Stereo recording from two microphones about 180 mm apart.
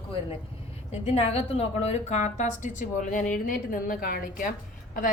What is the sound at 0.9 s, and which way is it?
A woman's voice, 35° left (ahead or behind).